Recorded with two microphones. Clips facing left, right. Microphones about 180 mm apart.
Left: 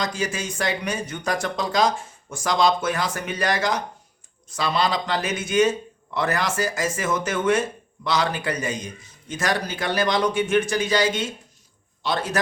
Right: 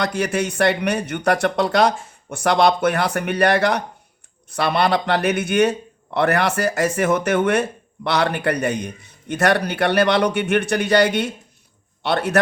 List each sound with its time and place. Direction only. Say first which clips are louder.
0.0 s a man's voice: right 6 dB; 65° right (ahead or behind)